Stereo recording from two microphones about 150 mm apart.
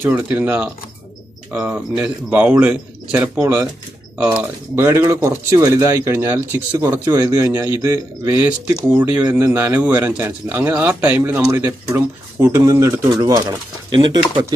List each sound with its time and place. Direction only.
0.0 s a man's voice: 15° right (ahead or behind)
3.4 s a man's voice: 20° right (ahead or behind)
6.7 s a man's voice: 25° right (ahead or behind)